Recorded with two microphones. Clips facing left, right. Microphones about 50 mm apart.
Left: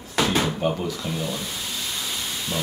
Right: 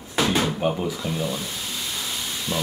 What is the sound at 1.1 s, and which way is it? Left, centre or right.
Speech, centre.